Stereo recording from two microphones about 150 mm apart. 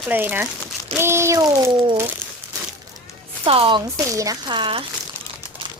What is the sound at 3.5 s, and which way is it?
Speech, 35° right (ahead or behind).